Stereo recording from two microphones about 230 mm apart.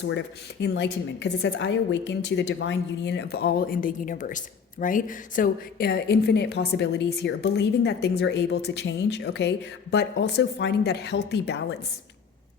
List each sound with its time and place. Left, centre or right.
0.6 s a woman's voice: left